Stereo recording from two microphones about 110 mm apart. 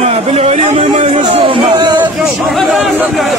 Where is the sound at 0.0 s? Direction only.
75° right (ahead or behind); by 2.0 s 45° right (ahead or behind).